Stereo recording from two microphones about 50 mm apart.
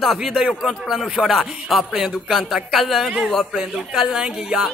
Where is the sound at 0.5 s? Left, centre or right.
Centre.